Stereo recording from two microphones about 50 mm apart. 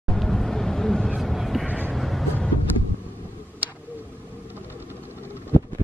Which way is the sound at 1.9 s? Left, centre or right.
Centre.